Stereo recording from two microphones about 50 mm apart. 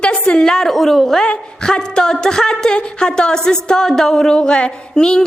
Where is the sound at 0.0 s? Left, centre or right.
Centre.